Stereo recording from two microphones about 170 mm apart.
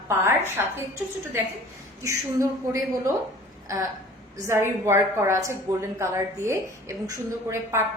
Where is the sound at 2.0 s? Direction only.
20° right (ahead or behind).